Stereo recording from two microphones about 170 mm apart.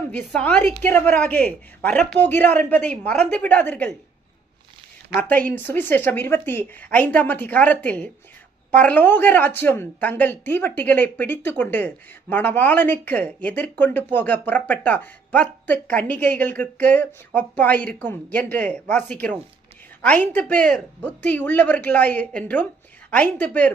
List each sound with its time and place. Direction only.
0.1 s speech: 10° left (ahead or behind)
5.3 s speech: 10° left (ahead or behind)